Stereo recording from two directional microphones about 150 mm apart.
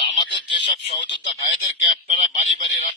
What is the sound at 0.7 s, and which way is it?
Speech, 35° left (ahead or behind).